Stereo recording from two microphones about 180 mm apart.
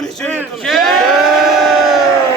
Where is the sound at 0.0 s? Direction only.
5° left (ahead or behind).